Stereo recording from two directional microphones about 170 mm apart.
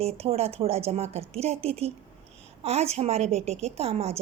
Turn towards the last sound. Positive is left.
turn(degrees=-35)  # may be behind; listen again after turning